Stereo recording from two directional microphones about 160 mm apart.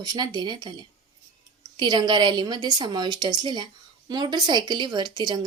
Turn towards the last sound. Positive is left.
turn(degrees=-25)  # may be behind; listen again after turning